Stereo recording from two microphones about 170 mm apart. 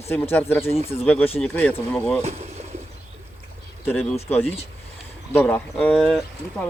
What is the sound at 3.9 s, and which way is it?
Speech, 10° left (ahead or behind).